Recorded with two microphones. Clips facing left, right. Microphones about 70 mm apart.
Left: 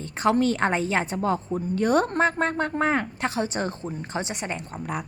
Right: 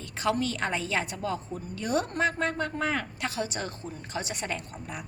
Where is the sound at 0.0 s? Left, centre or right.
Left.